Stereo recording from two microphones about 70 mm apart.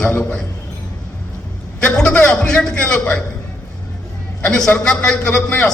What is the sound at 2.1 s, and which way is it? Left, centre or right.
A man's voice, left.